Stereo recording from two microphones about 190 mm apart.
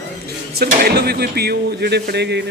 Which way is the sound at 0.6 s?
55° right (ahead or behind).